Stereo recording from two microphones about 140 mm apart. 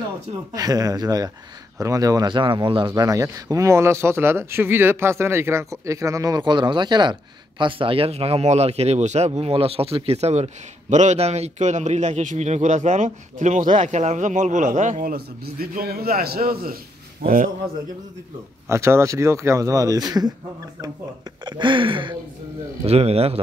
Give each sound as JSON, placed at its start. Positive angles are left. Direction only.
{"t": 0.6, "sound": "a man's voice", "side_deg": -25}
{"t": 18.7, "sound": "speech", "side_deg": -20}
{"t": 21.5, "sound": "a man's voice", "side_deg": -35}